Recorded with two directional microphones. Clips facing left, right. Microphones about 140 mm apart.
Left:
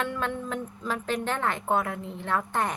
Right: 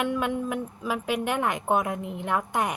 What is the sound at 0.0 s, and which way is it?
A woman's voice, 15° right (ahead or behind).